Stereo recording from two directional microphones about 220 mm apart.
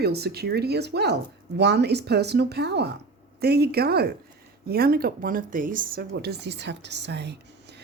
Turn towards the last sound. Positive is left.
turn(degrees=-50)  # may be behind; listen again after turning